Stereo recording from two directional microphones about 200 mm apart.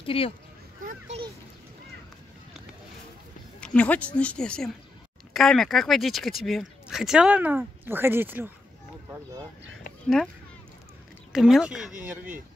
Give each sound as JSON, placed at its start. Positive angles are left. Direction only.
{"t": 0.0, "sound": "speech", "side_deg": 25}
{"t": 3.6, "sound": "speech", "side_deg": 5}
{"t": 11.3, "sound": "speech", "side_deg": 0}